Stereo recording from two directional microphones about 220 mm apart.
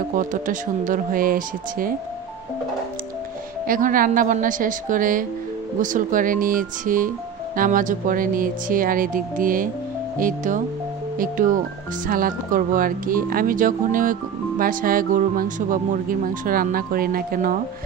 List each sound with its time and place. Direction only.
0.1 s speech: 35° right (ahead or behind)
3.6 s speech: 40° right (ahead or behind)